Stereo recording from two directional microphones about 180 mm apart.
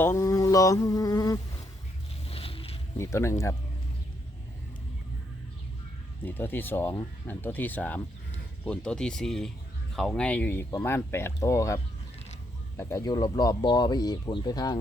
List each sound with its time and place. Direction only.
0.0 s speech: 15° left (ahead or behind)
2.2 s boat: 30° left (ahead or behind)
3.0 s speech: 15° left (ahead or behind)
6.2 s speech: 10° left (ahead or behind)